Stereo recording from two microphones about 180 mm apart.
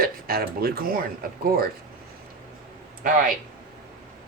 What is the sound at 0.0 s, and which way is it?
Speech, 55° right (ahead or behind).